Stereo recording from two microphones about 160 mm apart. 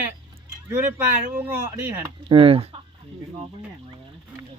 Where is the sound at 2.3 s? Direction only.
35° right (ahead or behind).